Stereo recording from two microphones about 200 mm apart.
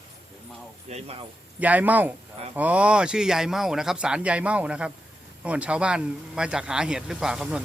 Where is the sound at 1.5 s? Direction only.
10° right (ahead or behind).